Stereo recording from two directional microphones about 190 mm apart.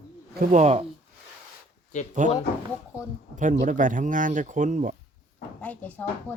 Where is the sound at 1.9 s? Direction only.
40° left (ahead or behind).